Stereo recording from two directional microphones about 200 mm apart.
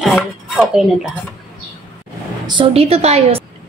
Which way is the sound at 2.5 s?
25° right (ahead or behind).